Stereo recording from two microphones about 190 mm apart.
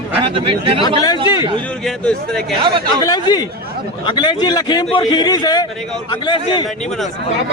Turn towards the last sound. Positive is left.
turn(degrees=25)  # may be behind; listen again after turning